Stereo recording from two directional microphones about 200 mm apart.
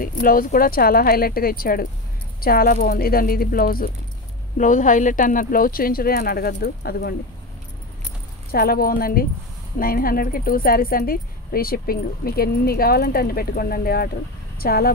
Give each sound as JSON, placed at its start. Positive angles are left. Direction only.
{"t": 0.0, "sound": "a woman's voice", "side_deg": 45}
{"t": 8.5, "sound": "a woman's voice", "side_deg": 50}